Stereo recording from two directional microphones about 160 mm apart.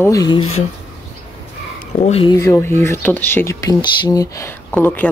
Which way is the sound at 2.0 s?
40° left (ahead or behind).